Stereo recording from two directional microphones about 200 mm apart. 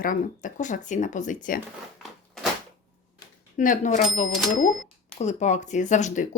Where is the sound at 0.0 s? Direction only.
40° left (ahead or behind).